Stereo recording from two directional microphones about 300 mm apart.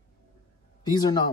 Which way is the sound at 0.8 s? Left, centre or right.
Centre.